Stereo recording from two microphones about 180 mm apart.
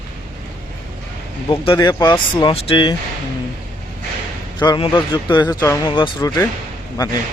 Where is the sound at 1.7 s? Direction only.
20° left (ahead or behind).